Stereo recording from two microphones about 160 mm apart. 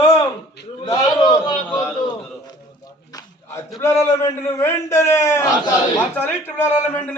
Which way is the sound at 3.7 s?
20° left (ahead or behind).